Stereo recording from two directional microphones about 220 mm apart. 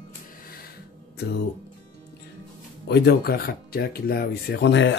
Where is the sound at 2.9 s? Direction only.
45° left (ahead or behind).